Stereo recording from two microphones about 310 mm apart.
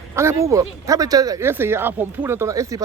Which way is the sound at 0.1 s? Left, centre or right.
Centre.